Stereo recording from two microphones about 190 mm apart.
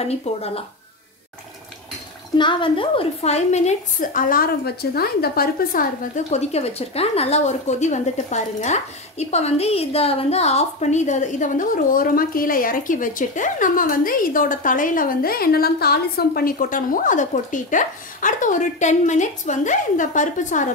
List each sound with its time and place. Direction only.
0.0 s a woman's voice: 35° left (ahead or behind)
2.3 s a woman's voice: 25° left (ahead or behind); by 20.6 s 40° left (ahead or behind)